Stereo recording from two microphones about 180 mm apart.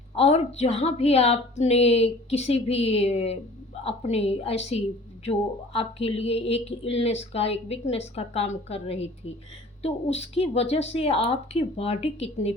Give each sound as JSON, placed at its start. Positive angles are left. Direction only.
{"t": 0.2, "sound": "a woman's voice", "side_deg": 35}